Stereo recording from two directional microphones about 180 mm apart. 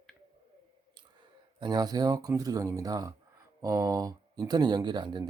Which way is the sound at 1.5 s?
25° right (ahead or behind).